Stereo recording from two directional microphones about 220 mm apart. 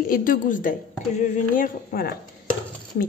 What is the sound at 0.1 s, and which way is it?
A woman's voice, 40° left (ahead or behind).